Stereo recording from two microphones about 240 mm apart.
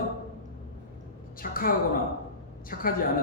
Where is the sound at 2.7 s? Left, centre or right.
Left.